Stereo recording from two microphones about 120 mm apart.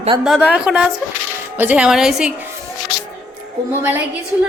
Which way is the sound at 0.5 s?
5° right (ahead or behind).